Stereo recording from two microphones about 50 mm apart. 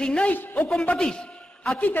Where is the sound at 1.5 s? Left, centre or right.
Centre.